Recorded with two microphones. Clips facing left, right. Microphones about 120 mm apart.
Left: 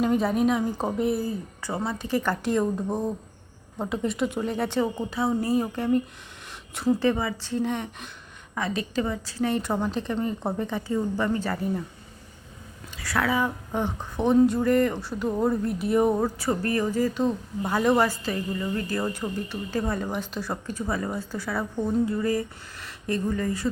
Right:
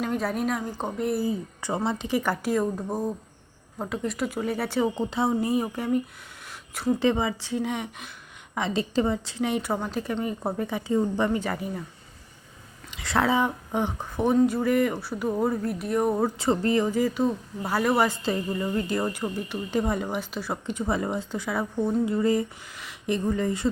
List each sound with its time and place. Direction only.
0.0 s a woman's voice: centre (ahead or behind)
1.6 s a woman's voice: 20° right (ahead or behind)
4.9 s a woman's voice: 25° right (ahead or behind)
7.0 s a woman's voice: 20° right (ahead or behind)
8.5 s a woman's voice: 25° right (ahead or behind)
13.0 s a woman's voice: 25° right (ahead or behind); by 16.2 s centre (ahead or behind)
16.2 s a woman's voice: 20° right (ahead or behind)
18.1 s a woman's voice: 25° right (ahead or behind)
22.7 s a sound: 5° right (ahead or behind)
23.0 s a woman's voice: 20° right (ahead or behind)